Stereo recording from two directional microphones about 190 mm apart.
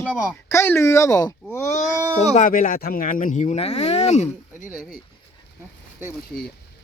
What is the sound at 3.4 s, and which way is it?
Speech, 30° left (ahead or behind).